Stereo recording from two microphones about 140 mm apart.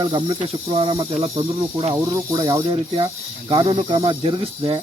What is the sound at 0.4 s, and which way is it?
Speech, 35° right (ahead or behind).